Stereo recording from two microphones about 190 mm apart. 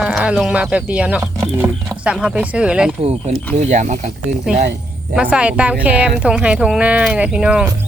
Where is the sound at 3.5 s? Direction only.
40° right (ahead or behind).